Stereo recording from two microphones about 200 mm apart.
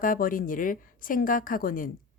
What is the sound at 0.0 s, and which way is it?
Speech, 45° left (ahead or behind).